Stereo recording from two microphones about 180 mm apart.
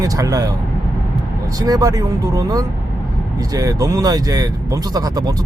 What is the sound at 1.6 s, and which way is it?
Speech, 20° right (ahead or behind).